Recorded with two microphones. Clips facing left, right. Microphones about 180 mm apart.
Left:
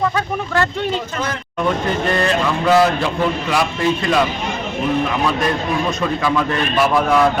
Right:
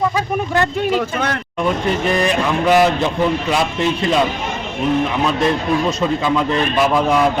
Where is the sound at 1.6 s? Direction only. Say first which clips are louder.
Right 1 dB; 10° right (ahead or behind).